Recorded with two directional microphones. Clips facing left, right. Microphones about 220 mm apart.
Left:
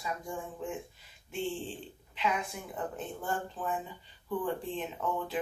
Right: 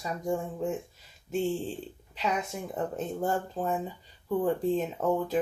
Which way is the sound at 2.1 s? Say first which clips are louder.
Right 2 dB; 40° right (ahead or behind).